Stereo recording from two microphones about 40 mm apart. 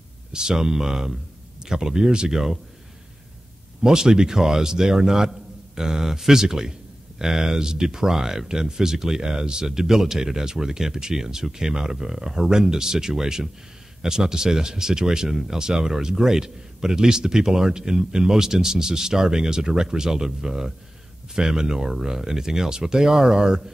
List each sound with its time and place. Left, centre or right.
0.3 s speech: centre
3.8 s speech: centre